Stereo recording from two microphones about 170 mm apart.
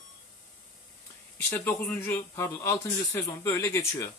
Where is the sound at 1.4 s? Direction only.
15° left (ahead or behind).